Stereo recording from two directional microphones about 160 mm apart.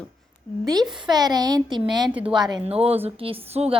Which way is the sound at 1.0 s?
25° right (ahead or behind).